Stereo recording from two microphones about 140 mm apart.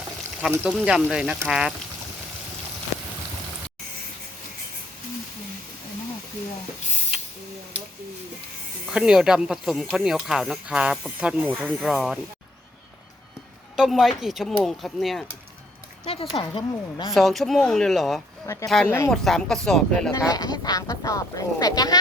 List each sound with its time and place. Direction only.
0.5 s speech: 10° right (ahead or behind)
8.9 s speech: 5° right (ahead or behind)
13.7 s speech: 5° right (ahead or behind)
16.0 s speech: 40° left (ahead or behind)
17.2 s speech: centre (ahead or behind)
18.4 s speech: 20° left (ahead or behind)
19.1 s speech: 5° left (ahead or behind)
20.1 s speech: 25° left (ahead or behind)